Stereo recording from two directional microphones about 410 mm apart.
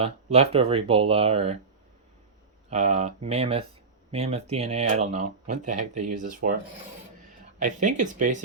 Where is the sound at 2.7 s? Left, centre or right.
Centre.